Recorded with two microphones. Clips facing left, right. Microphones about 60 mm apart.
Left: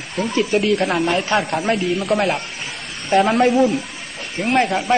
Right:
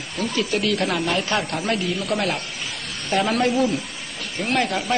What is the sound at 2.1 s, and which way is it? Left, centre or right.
A woman's voice, left.